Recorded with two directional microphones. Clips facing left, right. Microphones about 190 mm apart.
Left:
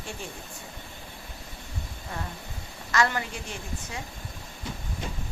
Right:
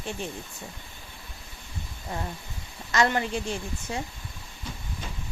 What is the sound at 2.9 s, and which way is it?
Speech, 20° right (ahead or behind).